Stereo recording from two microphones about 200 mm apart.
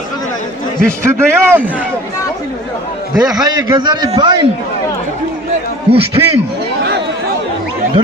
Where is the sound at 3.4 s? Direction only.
20° right (ahead or behind).